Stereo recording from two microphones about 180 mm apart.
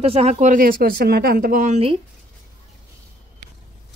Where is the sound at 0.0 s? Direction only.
35° right (ahead or behind).